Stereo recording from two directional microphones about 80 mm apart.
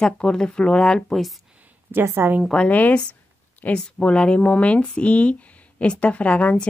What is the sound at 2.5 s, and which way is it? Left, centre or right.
Speech, centre.